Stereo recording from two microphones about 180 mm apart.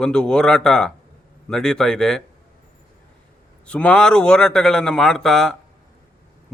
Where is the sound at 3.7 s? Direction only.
5° left (ahead or behind).